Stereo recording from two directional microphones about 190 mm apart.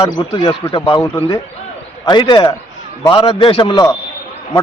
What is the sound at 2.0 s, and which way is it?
A man's voice, 25° left (ahead or behind).